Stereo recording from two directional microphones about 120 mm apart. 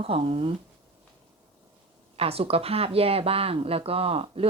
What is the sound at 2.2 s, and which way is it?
A woman's voice, 55° right (ahead or behind).